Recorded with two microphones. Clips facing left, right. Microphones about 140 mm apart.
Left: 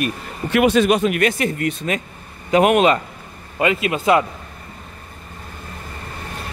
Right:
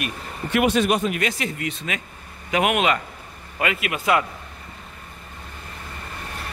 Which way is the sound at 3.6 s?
25° left (ahead or behind).